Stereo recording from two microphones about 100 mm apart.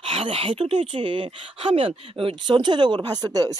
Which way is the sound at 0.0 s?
65° right (ahead or behind).